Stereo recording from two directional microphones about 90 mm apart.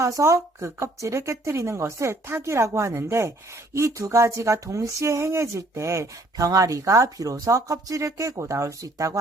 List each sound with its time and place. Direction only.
0.0 s speech: 35° right (ahead or behind)